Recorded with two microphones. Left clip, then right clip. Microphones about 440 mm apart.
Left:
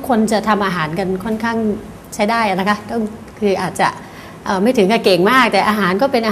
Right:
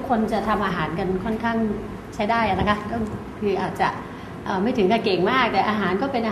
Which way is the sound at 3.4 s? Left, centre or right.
Left.